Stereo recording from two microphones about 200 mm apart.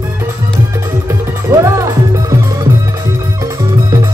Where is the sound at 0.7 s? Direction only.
15° right (ahead or behind).